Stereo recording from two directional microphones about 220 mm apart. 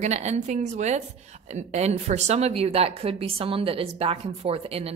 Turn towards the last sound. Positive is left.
turn(degrees=-25)  # may be behind; listen again after turning